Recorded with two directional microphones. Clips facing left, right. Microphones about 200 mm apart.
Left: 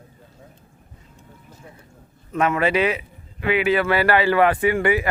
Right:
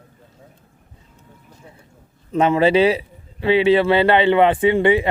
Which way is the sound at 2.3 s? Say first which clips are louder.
Right 5 dB; 30° right (ahead or behind).